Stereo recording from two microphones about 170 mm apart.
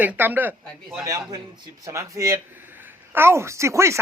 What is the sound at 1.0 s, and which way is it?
Speech, 20° right (ahead or behind).